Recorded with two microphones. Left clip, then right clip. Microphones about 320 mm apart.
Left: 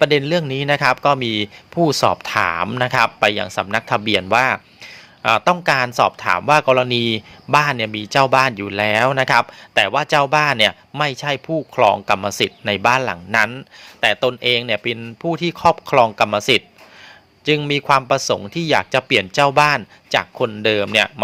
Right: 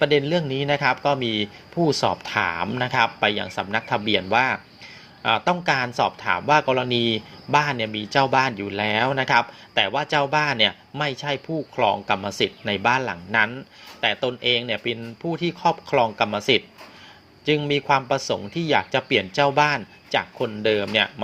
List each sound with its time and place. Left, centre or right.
0.0 s a man's voice: left